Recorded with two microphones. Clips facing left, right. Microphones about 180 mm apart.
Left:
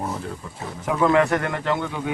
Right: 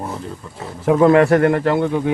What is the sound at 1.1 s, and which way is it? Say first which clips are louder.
Speech: right 7 dB; 40° right (ahead or behind).